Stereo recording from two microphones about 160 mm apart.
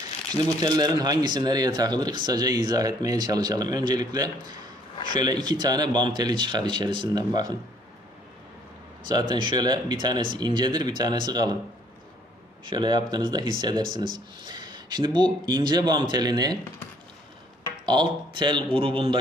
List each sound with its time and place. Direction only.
0.3 s speech: 25° right (ahead or behind)
9.0 s speech: 25° right (ahead or behind)
12.6 s speech: 25° right (ahead or behind)
17.8 s speech: 30° right (ahead or behind)